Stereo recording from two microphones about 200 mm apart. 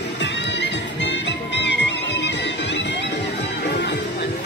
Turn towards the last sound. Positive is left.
turn(degrees=60)  # may be behind; listen again after turning